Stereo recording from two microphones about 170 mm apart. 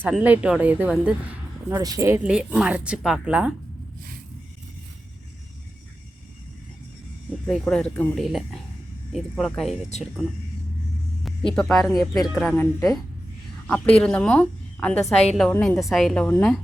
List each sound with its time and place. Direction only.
0.1 s speech: 5° right (ahead or behind)
1.7 s speech: 20° right (ahead or behind); by 3.5 s 5° right (ahead or behind)
7.4 s speech: 5° left (ahead or behind)
11.2 s speech: centre (ahead or behind)
13.7 s a woman's voice: 10° left (ahead or behind)
15.0 s a woman's voice: 40° left (ahead or behind)
15.4 s speech: 5° left (ahead or behind)